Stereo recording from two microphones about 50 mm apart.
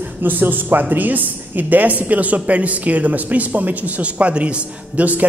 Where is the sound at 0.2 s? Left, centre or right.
Right.